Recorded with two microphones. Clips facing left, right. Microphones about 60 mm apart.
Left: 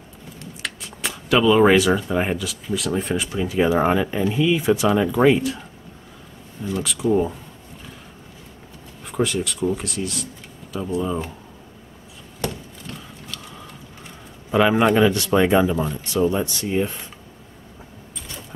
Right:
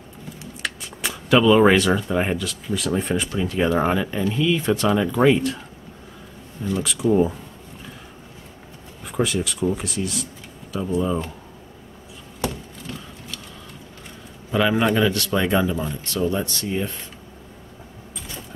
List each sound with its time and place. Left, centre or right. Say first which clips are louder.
0.4 s speech: right 1 dB; centre
6.6 s a man's voice: right 1 dB; centre
9.0 s a man's voice: even; centre
12.4 s a sound: right 1 dB; centre
14.5 s speech: left 3 dB; centre